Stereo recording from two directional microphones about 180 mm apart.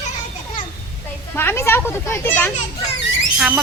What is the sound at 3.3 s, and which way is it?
Speech, 5° right (ahead or behind).